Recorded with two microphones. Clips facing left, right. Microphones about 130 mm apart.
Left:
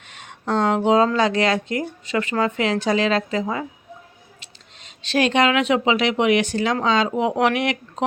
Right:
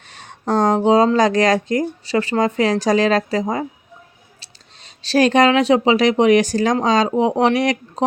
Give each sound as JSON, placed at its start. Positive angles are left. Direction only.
{"t": 0.1, "sound": "speech", "side_deg": -35}